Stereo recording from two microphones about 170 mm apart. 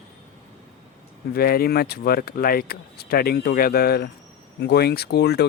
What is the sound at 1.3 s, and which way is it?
Speech, 65° left (ahead or behind).